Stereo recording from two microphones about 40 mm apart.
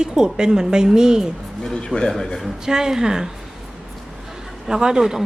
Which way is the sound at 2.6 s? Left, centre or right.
Centre.